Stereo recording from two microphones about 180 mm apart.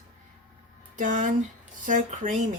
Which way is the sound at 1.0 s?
45° right (ahead or behind).